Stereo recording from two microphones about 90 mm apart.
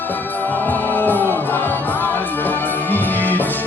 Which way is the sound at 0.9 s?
20° left (ahead or behind).